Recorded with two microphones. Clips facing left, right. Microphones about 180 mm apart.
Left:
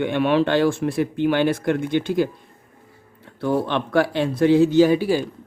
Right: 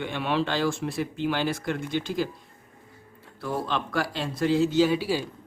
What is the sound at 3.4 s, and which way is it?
A man's voice, 65° left (ahead or behind).